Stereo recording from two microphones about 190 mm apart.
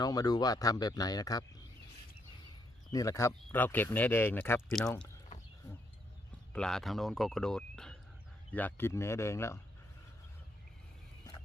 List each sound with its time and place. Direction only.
0.0 s speech: 20° left (ahead or behind)
2.9 s speech: 15° left (ahead or behind)
6.5 s speech: 5° left (ahead or behind)